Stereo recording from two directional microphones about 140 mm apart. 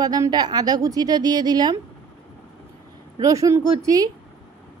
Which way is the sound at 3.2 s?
25° right (ahead or behind).